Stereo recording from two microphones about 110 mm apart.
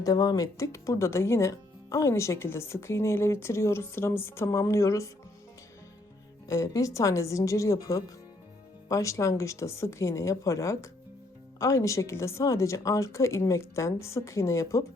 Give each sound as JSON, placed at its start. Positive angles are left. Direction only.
{"t": 0.0, "sound": "speech", "side_deg": 35}
{"t": 6.5, "sound": "speech", "side_deg": 30}